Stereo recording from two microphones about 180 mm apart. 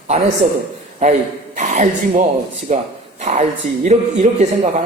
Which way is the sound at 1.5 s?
40° right (ahead or behind).